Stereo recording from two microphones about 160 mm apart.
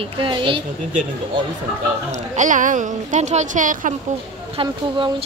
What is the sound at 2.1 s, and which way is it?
A woman's voice, 50° right (ahead or behind).